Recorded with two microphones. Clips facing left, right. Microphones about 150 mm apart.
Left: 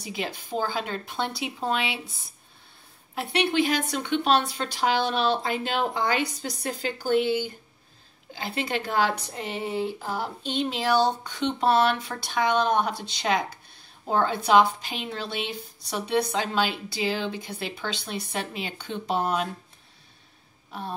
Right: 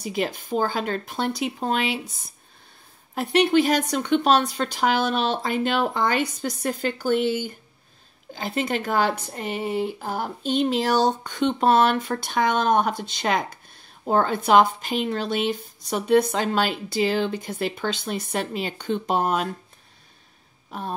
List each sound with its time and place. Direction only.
0.0 s speech: 45° right (ahead or behind)
3.2 s speech: 45° right (ahead or behind)